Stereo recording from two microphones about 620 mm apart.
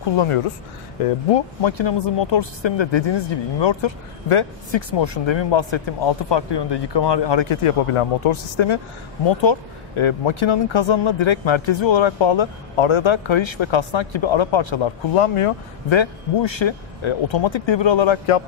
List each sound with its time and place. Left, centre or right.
1.3 s speech: left